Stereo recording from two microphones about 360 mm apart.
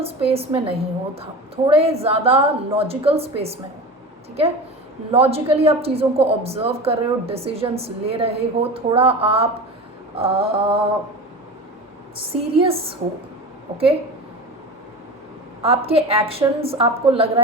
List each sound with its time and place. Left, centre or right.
0.0 s a woman's voice: centre
5.1 s a woman's voice: centre
12.5 s a woman's voice: centre
15.6 s a woman's voice: centre